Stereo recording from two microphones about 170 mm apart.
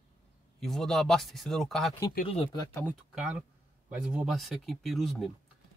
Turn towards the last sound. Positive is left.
turn(degrees=0)  # may be behind; listen again after turning